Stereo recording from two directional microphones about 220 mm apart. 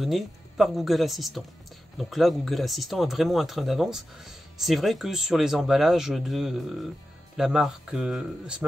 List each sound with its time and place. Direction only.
0.0 s speech: centre (ahead or behind)